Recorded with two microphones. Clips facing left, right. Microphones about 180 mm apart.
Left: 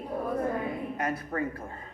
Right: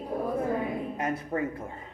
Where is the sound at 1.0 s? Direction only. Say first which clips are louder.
Right 2 dB; 25° right (ahead or behind).